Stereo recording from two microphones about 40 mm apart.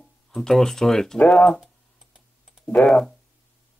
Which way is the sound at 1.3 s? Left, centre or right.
Left.